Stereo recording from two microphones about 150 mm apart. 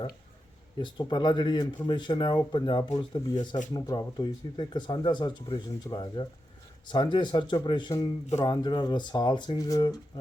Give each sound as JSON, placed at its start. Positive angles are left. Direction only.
{"t": 0.8, "sound": "speech", "side_deg": 30}